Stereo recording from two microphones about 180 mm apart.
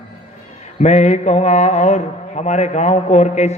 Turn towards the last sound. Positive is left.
turn(degrees=40)  # may be behind; listen again after turning